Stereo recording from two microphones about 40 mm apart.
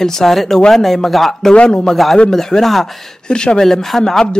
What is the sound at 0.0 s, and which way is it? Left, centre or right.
Speech, centre.